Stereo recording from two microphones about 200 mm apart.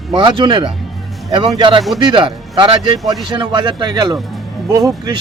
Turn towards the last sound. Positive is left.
turn(degrees=-20)  # may be behind; listen again after turning